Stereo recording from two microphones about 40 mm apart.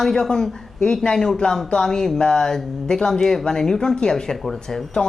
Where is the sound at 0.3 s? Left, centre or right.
Centre.